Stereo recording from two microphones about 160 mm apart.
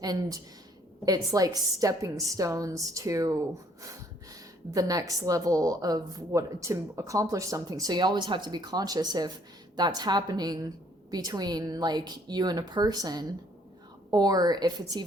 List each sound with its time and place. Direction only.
0.0 s speech: 25° right (ahead or behind)
4.7 s speech: 20° right (ahead or behind)